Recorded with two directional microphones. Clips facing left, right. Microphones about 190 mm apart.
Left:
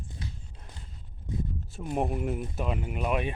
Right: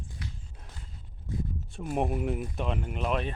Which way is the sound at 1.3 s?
20° left (ahead or behind).